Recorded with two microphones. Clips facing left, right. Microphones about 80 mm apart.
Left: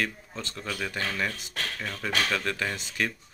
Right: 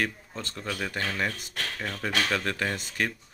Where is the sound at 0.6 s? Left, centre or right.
Centre.